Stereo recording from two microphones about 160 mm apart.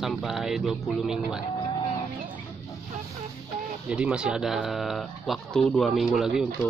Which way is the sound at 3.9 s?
5° right (ahead or behind).